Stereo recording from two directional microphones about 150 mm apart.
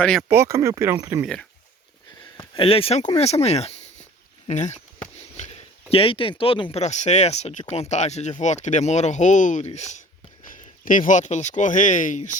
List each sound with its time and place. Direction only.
0.0 s speech: 5° left (ahead or behind)
0.3 s speech: 20° right (ahead or behind)
2.4 s speech: 35° left (ahead or behind)
5.4 s a sound: 55° left (ahead or behind)
5.9 s speech: 35° left (ahead or behind)
10.5 s speech: 65° left (ahead or behind)